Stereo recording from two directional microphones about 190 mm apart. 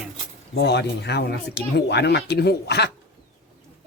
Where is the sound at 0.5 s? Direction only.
60° left (ahead or behind).